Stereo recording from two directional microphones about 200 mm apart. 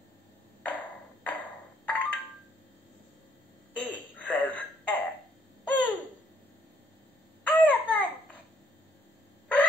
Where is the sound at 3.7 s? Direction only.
5° left (ahead or behind).